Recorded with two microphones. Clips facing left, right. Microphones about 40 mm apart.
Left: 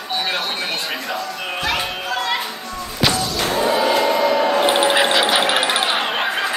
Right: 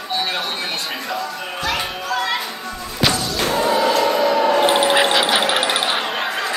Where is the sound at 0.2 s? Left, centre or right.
Centre.